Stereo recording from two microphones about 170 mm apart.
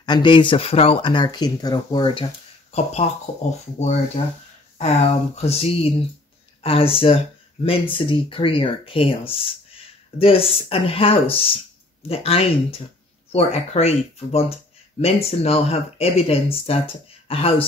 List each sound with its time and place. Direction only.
0.0 s speech: 25° left (ahead or behind)